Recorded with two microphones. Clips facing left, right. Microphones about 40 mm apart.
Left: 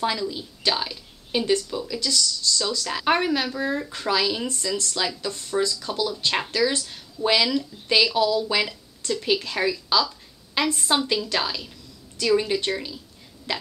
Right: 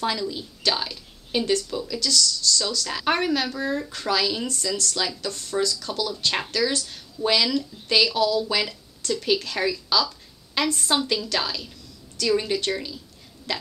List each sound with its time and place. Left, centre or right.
0.0 s a woman's voice: centre